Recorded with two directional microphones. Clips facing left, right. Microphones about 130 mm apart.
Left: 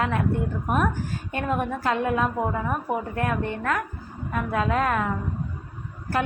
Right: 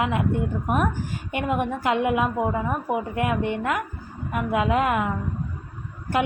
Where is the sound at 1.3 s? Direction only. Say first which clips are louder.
Right 2 dB; 15° right (ahead or behind).